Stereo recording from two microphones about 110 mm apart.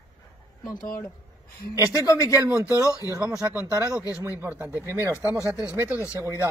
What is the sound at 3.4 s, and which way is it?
Speech, 20° right (ahead or behind).